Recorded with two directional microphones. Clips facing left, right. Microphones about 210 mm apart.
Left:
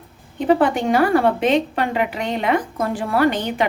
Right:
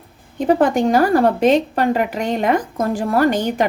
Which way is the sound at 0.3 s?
40° right (ahead or behind).